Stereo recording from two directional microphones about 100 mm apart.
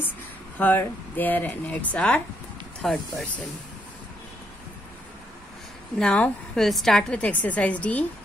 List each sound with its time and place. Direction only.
0.6 s a woman's voice: 15° left (ahead or behind)
2.8 s speech: centre (ahead or behind)
5.9 s a woman's voice: 10° left (ahead or behind)